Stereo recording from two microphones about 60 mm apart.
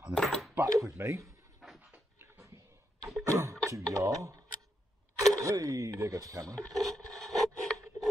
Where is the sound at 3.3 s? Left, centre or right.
Right.